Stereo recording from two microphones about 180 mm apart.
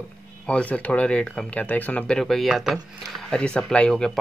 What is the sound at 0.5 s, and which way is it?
Speech, 5° left (ahead or behind).